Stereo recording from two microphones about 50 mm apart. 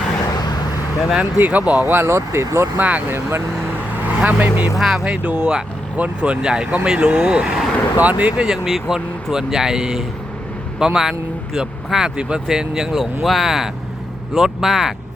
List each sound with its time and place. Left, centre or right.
1.2 s speech: right
1.8 s speech: right
2.7 s speech: right
3.1 s speech: right
4.0 s speech: right
4.8 s speech: centre
5.0 s speech: right
7.9 s speech: right
8.4 s speech: centre